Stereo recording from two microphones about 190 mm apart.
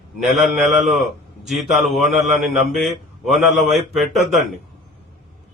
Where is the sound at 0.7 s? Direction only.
40° right (ahead or behind).